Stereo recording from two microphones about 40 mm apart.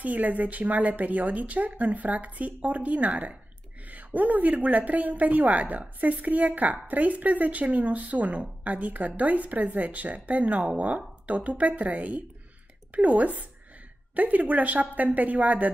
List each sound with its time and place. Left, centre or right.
0.0 s a woman's voice: right